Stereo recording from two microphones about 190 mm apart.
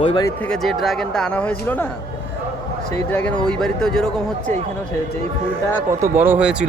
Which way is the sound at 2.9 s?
10° left (ahead or behind).